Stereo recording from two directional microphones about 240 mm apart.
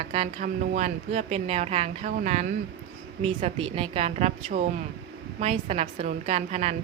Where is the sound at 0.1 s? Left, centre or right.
Right.